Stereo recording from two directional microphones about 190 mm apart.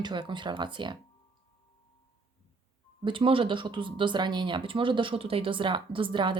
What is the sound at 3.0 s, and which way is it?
Speech, 25° right (ahead or behind).